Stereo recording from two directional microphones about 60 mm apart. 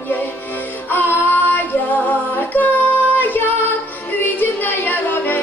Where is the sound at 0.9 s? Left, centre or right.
Left.